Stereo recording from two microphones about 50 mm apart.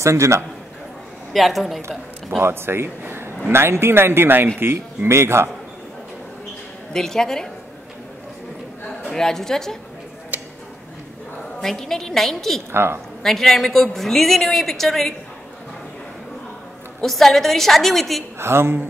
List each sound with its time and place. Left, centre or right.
0.0 s a man's voice: right
1.3 s a woman's voice: centre
2.4 s speech: right
3.0 s a sound: right
3.5 s speech: right
4.6 s speech: right
6.9 s a woman's voice: centre
9.0 s a woman's voice: centre
10.3 s a sound: right
11.6 s a woman's voice: centre
12.7 s speech: right
13.2 s a woman's voice: centre
17.0 s a woman's voice: centre
18.4 s speech: right